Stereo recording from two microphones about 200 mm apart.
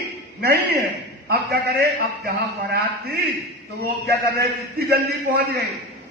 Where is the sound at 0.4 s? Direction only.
50° right (ahead or behind).